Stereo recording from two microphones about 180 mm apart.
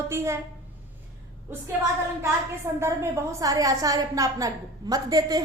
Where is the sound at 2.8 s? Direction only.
15° right (ahead or behind).